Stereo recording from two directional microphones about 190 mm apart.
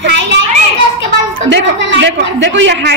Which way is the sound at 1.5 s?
70° right (ahead or behind).